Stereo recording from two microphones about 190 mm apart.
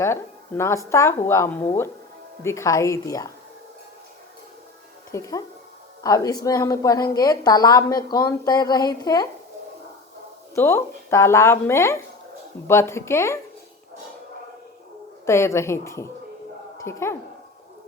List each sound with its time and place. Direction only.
0.0 s speech: 15° left (ahead or behind)
5.1 s a woman's voice: 15° left (ahead or behind)
10.5 s speech: 15° left (ahead or behind)
15.3 s a woman's voice: 15° left (ahead or behind)